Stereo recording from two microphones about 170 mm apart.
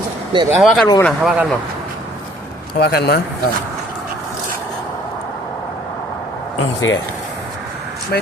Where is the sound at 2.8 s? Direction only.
70° left (ahead or behind).